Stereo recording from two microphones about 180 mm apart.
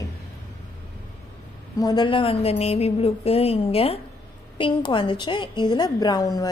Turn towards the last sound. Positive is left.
turn(degrees=20)  # may be behind; listen again after turning